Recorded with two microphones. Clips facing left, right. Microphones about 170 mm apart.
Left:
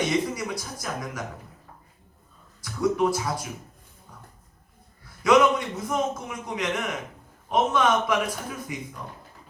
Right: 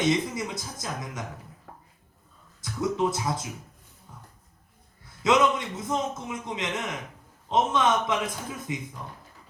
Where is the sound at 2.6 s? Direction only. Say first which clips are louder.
Left 3 dB; 20° right (ahead or behind).